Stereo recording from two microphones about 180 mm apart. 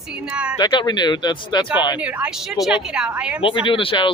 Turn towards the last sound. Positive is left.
turn(degrees=30)  # may be behind; listen again after turning